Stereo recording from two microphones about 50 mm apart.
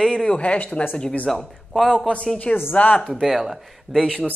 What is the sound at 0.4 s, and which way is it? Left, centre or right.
Speech, left.